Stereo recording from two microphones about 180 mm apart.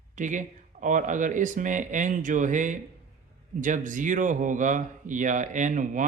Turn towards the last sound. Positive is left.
turn(degrees=-45)  # may be behind; listen again after turning